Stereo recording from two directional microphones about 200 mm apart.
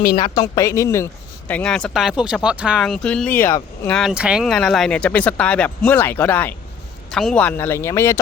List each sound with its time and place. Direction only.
0.0 s speech: 50° left (ahead or behind)
0.3 s speech: 15° left (ahead or behind)